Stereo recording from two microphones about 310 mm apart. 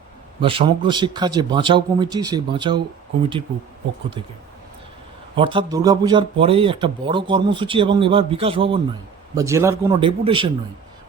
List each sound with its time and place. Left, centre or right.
0.4 s speech: centre
5.4 s speech: centre